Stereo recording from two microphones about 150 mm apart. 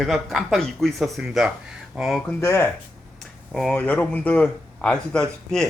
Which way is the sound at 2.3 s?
15° left (ahead or behind).